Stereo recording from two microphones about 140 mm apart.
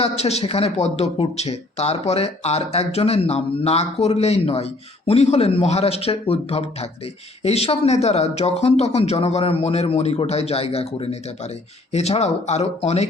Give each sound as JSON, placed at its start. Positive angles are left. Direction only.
{"t": 0.0, "sound": "speech", "side_deg": 50}